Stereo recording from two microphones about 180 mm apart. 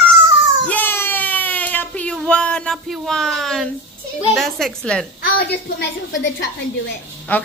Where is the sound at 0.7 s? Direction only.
10° left (ahead or behind).